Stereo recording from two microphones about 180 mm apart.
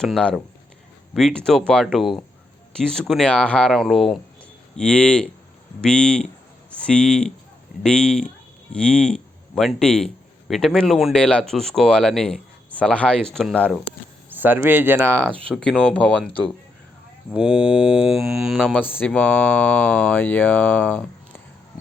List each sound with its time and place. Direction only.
0.0 s speech: 5° left (ahead or behind)
14.3 s speech: 10° right (ahead or behind)
15.8 s speech: 5° left (ahead or behind)
17.3 s speech: 5° right (ahead or behind)
18.8 s speech: 10° left (ahead or behind)